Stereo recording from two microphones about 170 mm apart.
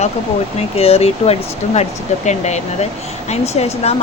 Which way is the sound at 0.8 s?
35° left (ahead or behind).